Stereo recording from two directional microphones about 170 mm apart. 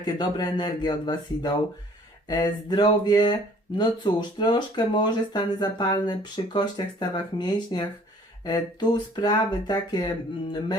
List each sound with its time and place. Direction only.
0.0 s speech: 25° left (ahead or behind)